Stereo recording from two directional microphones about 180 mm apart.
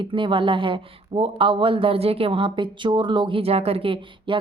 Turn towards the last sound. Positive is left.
turn(degrees=-30)  # may be behind; listen again after turning